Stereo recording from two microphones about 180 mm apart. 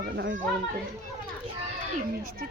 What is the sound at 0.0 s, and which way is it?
Speech, 70° right (ahead or behind).